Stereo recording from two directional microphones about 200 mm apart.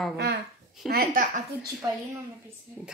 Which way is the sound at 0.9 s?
50° right (ahead or behind).